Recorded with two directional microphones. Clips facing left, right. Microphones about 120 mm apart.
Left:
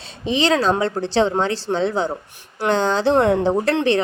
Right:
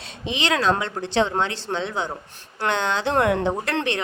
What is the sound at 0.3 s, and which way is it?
A woman's voice, 35° left (ahead or behind).